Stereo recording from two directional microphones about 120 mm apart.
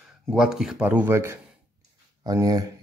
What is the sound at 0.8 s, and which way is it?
Speech, 15° right (ahead or behind).